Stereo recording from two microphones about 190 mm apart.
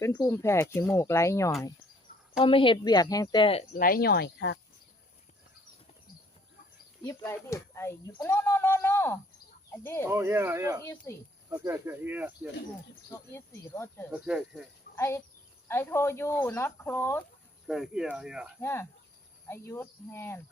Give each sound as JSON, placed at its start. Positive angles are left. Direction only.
{"t": 0.0, "sound": "speech", "side_deg": 15}
{"t": 2.4, "sound": "speech", "side_deg": 30}
{"t": 3.8, "sound": "speech", "side_deg": 50}
{"t": 7.0, "sound": "speech", "side_deg": 15}
{"t": 10.1, "sound": "speech", "side_deg": -15}
{"t": 10.8, "sound": "speech", "side_deg": 15}
{"t": 11.4, "sound": "speech", "side_deg": -15}
{"t": 13.1, "sound": "speech", "side_deg": 15}
{"t": 14.1, "sound": "speech", "side_deg": -5}
{"t": 14.9, "sound": "speech", "side_deg": 15}
{"t": 17.7, "sound": "speech", "side_deg": 0}
{"t": 18.6, "sound": "speech", "side_deg": 10}